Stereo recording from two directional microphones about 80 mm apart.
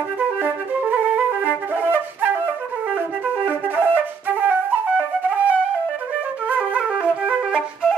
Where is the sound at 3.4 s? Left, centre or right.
Right.